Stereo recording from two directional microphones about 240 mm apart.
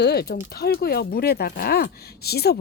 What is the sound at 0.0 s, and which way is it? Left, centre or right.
Speech, left.